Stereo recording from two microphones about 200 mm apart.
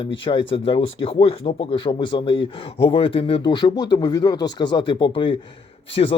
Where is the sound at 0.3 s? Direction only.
25° left (ahead or behind).